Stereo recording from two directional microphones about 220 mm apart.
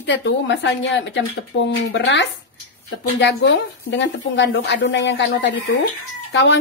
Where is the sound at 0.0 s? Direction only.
55° left (ahead or behind).